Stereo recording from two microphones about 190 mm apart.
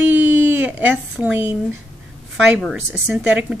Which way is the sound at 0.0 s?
10° right (ahead or behind).